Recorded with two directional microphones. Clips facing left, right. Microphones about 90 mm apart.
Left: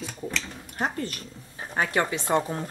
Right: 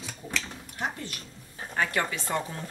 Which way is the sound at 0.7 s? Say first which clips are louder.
Left 5 dB; 45° left (ahead or behind).